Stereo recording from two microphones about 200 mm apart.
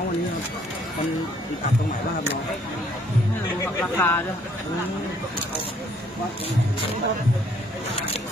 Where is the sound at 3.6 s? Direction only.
10° left (ahead or behind).